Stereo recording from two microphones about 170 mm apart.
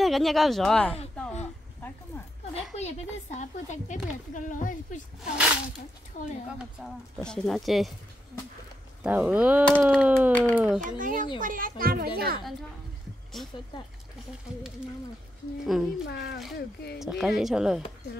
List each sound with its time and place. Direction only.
0.0 s speech: centre (ahead or behind)
2.5 s a woman's voice: 40° left (ahead or behind)
6.8 s speech: centre (ahead or behind)
9.0 s speech: 10° right (ahead or behind)
10.8 s a child's voice: 50° right (ahead or behind)
15.6 s speech: centre (ahead or behind)
16.1 s speech: 70° left (ahead or behind)
17.0 s speech: centre (ahead or behind)